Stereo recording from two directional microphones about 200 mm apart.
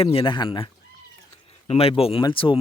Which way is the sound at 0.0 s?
30° left (ahead or behind).